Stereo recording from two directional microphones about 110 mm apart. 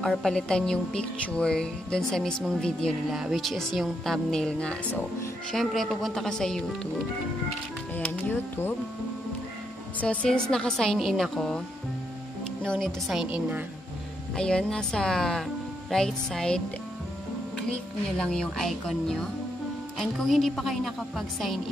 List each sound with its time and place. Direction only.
0.0 s a woman's voice: 5° left (ahead or behind)
7.9 s a woman's voice: 15° left (ahead or behind)
9.9 s speech: 10° left (ahead or behind)
12.6 s speech: 5° left (ahead or behind)
14.3 s speech: 5° left (ahead or behind)